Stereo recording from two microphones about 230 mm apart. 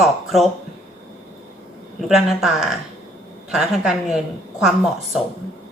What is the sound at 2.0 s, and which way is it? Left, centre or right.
A woman's voice, centre.